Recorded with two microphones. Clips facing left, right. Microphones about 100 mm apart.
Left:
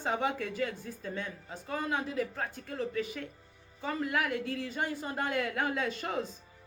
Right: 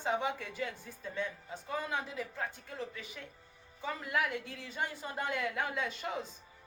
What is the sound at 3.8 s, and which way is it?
Speech, 85° left.